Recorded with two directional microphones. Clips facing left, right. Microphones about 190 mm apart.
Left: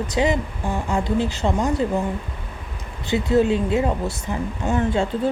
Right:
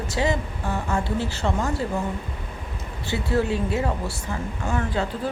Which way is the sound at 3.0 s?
20° left (ahead or behind).